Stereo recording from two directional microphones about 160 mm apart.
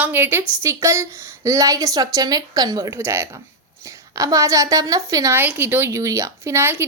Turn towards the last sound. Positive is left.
turn(degrees=-15)  # may be behind; listen again after turning